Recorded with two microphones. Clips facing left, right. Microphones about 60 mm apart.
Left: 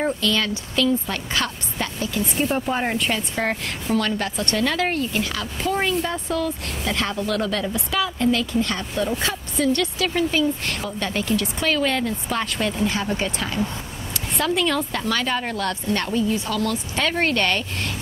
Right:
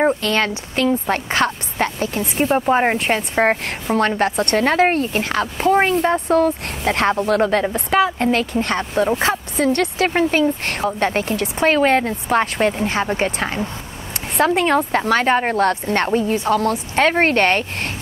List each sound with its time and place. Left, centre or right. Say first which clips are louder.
0.0 s a woman's voice: right 5 dB; right
14.3 s a woman's voice: right 6 dB; right